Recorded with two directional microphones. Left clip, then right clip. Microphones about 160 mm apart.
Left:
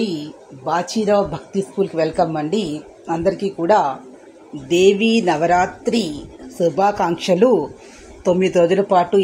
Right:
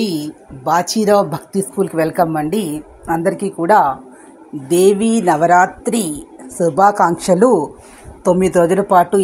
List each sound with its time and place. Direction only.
0.0 s speech: 75° right (ahead or behind); by 7.0 s 40° right (ahead or behind)
7.3 s a man's voice: 20° right (ahead or behind)
8.2 s speech: 45° right (ahead or behind)